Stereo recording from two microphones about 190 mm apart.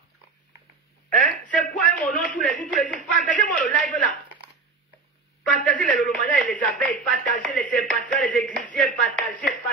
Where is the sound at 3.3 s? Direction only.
45° left (ahead or behind).